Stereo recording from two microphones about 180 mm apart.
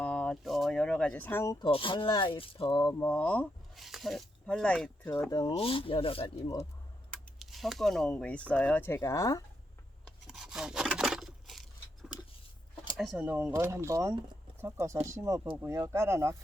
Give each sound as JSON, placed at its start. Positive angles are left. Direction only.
{"t": 0.0, "sound": "speech", "side_deg": 5}
{"t": 3.0, "sound": "speech", "side_deg": 10}
{"t": 5.3, "sound": "speech", "side_deg": 25}
{"t": 7.3, "sound": "speech", "side_deg": 0}
{"t": 10.2, "sound": "rub", "side_deg": -5}
{"t": 13.0, "sound": "speech", "side_deg": -5}